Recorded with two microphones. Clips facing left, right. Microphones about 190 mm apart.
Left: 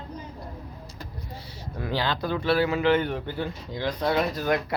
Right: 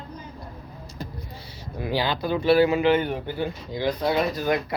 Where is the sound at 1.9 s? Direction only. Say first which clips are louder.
Right 2 dB; 10° right (ahead or behind).